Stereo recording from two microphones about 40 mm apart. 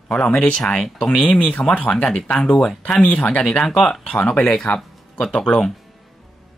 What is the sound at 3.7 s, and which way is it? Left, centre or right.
Speech, centre.